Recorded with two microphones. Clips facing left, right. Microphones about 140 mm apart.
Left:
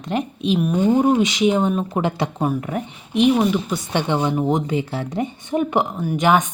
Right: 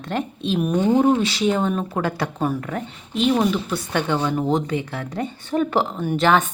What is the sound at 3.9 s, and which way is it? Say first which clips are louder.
A woman's voice: left 2 dB; 20° left (ahead or behind).